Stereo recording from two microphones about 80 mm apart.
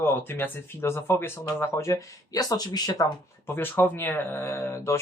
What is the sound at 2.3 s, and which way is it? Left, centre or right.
Speech, left.